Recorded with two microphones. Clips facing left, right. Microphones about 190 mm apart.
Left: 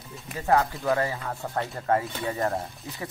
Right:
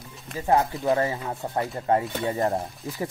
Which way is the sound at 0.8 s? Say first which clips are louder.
Right 2 dB; 25° right (ahead or behind).